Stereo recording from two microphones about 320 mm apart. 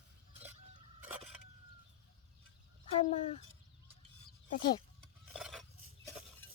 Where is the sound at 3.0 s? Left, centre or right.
Left.